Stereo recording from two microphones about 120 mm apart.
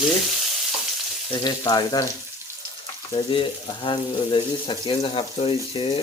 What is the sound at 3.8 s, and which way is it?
Speech, 45° left (ahead or behind).